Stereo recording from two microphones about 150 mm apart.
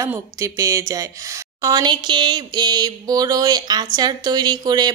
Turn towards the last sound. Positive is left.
turn(degrees=-25)  # may be behind; listen again after turning